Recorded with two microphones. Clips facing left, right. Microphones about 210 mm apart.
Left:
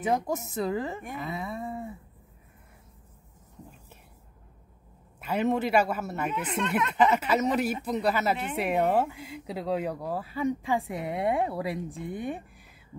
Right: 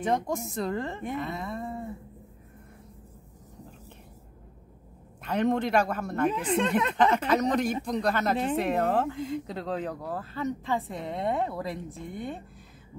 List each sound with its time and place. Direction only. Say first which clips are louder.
0.0 s a woman's voice: even; 5° left (ahead or behind)
5.2 s speech: right 1 dB; 5° left (ahead or behind)
6.3 s speech: right 4 dB; 30° right (ahead or behind)
7.0 s speech: left 1 dB; 5° left (ahead or behind)